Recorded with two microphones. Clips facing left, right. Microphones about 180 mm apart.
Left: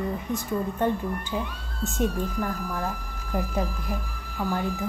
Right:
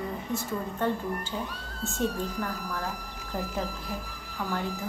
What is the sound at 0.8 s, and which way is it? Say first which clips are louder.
Speech: left 3 dB; 15° left (ahead or behind).